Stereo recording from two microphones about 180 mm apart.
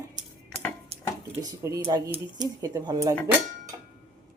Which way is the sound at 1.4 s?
15° right (ahead or behind).